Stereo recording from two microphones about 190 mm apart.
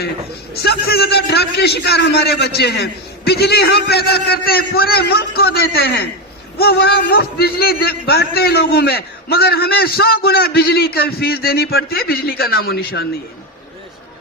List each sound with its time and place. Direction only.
0.6 s a man's voice: 60° left (ahead or behind)